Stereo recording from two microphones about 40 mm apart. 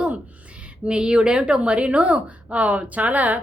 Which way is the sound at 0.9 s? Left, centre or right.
Right.